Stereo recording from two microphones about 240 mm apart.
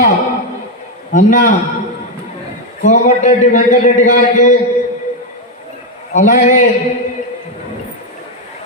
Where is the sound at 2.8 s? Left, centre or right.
Left.